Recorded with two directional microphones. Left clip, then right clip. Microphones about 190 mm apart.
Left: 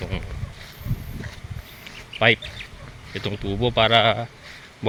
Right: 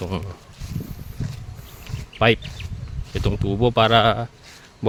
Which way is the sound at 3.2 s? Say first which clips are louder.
Right 3 dB; 40° right (ahead or behind).